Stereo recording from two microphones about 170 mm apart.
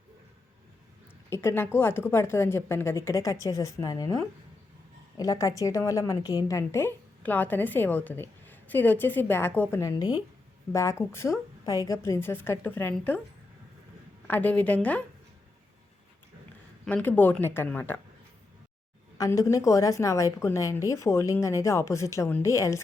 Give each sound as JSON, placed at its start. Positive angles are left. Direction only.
{"t": 1.3, "sound": "a woman's voice", "side_deg": 15}
{"t": 14.3, "sound": "a woman's voice", "side_deg": 10}
{"t": 16.8, "sound": "a woman's voice", "side_deg": 10}
{"t": 19.1, "sound": "a woman's voice", "side_deg": 20}